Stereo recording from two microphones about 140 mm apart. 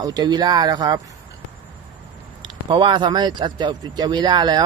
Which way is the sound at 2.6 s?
35° right (ahead or behind).